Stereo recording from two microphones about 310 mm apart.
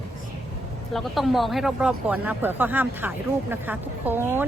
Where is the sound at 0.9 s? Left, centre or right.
Centre.